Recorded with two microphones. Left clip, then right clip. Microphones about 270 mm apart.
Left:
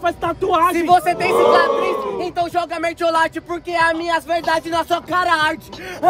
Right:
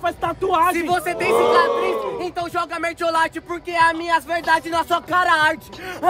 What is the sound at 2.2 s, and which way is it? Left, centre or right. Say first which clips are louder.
Speech: left 4 dB; centre.